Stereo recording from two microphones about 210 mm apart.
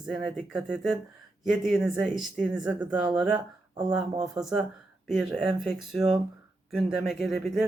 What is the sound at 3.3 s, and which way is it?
Speech, 20° right (ahead or behind).